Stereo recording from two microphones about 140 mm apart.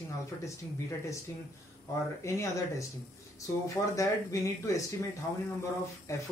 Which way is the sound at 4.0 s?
20° left (ahead or behind).